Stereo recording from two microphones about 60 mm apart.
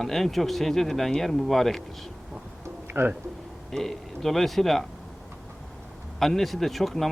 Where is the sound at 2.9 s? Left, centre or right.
Right.